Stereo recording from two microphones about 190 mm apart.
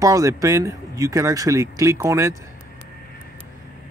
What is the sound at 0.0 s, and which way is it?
Speech, 15° right (ahead or behind).